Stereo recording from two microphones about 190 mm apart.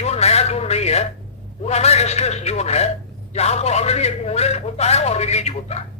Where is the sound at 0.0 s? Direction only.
35° left (ahead or behind).